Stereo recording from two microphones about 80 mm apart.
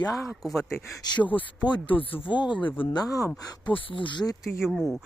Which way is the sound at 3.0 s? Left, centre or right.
Left.